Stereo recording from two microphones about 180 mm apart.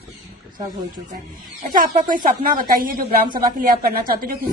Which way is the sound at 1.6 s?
50° right (ahead or behind).